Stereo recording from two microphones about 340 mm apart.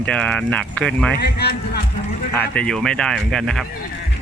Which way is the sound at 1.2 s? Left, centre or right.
Left.